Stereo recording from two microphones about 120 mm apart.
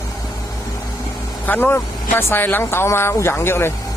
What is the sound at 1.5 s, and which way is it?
Speech, 15° left (ahead or behind).